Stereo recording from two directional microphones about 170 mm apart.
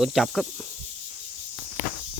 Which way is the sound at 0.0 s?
Centre (ahead or behind).